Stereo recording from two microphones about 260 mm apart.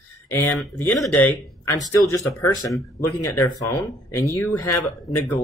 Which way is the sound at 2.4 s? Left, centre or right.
Centre.